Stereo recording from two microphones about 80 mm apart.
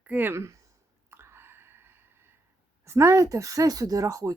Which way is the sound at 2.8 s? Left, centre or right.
Right.